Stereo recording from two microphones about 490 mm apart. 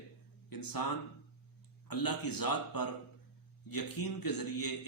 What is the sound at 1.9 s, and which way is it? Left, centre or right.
A man's voice, left.